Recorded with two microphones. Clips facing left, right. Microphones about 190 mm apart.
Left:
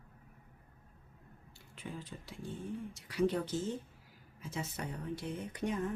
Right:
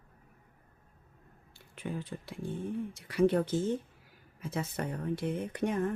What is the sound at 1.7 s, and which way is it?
Speech, 55° right (ahead or behind).